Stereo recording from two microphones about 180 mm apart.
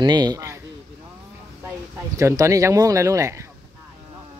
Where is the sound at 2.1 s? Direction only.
15° right (ahead or behind).